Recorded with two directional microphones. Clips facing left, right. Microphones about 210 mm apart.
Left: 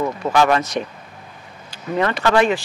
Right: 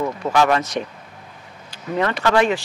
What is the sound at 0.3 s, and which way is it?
Speech, 15° left (ahead or behind).